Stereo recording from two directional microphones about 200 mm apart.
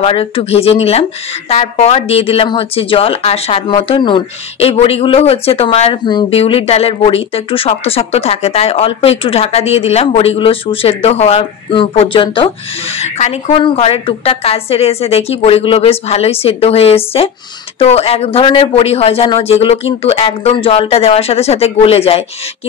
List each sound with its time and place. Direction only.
0.0 s speech: 30° left (ahead or behind)